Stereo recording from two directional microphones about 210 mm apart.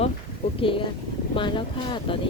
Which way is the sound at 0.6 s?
25° left (ahead or behind).